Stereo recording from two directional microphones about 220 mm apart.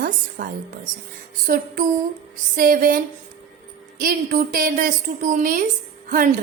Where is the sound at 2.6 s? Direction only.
40° right (ahead or behind).